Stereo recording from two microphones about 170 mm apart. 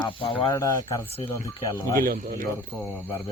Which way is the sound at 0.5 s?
20° left (ahead or behind).